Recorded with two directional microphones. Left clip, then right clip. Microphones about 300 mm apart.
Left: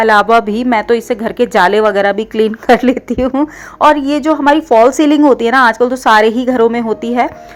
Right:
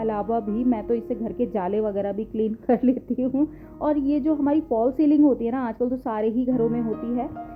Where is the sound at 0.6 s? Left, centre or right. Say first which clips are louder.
Left 13 dB; centre.